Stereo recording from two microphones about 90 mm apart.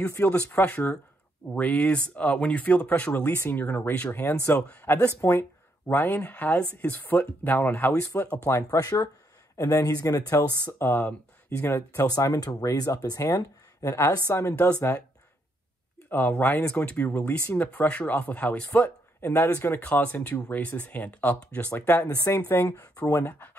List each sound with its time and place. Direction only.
0.0 s speech: 20° left (ahead or behind)
8.6 s speech: 45° left (ahead or behind)
10.8 s speech: 25° left (ahead or behind)
12.1 s speech: 40° left (ahead or behind)
16.1 s speech: 20° left (ahead or behind)